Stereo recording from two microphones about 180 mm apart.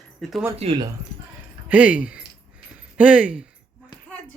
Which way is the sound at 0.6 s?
30° right (ahead or behind).